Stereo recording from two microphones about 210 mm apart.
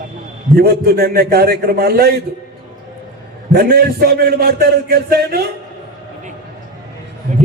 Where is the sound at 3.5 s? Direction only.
45° right (ahead or behind).